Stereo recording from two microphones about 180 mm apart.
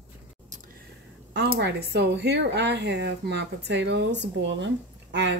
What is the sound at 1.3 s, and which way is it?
Speech, 70° right (ahead or behind).